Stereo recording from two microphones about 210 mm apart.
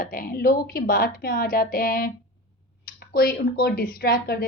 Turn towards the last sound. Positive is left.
turn(degrees=45)  # may be behind; listen again after turning